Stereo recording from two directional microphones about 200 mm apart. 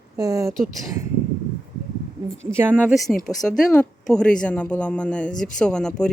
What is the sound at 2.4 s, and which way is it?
Speech, 10° right (ahead or behind).